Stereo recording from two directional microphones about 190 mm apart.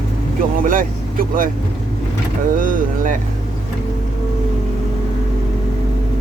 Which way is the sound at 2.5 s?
45° right (ahead or behind).